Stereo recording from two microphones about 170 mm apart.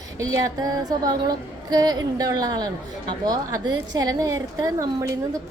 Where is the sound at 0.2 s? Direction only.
20° right (ahead or behind).